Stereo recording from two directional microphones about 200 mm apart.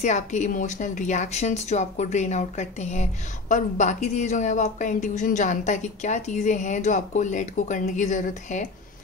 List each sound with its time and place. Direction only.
0.0 s speech: 35° left (ahead or behind)